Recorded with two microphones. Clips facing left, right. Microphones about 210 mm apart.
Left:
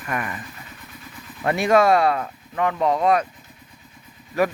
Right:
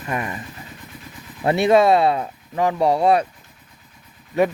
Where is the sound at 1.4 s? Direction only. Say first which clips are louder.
Right 2 dB; 25° right (ahead or behind).